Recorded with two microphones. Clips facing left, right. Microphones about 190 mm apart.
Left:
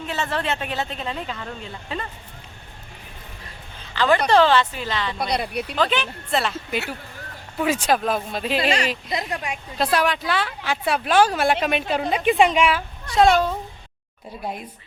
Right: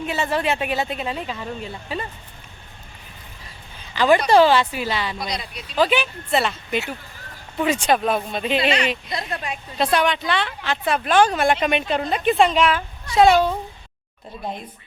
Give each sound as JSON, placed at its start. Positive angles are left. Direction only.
{"t": 0.0, "sound": "speech", "side_deg": -15}
{"t": 3.9, "sound": "speech", "side_deg": -15}
{"t": 5.1, "sound": "speech", "side_deg": 60}
{"t": 5.7, "sound": "speech", "side_deg": -10}
{"t": 9.1, "sound": "a woman's voice", "side_deg": 15}
{"t": 9.7, "sound": "a woman's voice", "side_deg": 0}
{"t": 13.1, "sound": "speech", "side_deg": 0}